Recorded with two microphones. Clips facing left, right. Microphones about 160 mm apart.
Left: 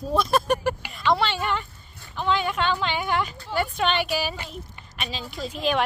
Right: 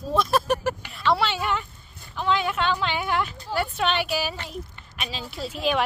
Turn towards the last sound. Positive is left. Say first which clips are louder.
# even
turn(degrees=-5)  # may be behind; listen again after turning